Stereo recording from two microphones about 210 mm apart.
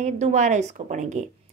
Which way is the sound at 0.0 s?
35° right (ahead or behind).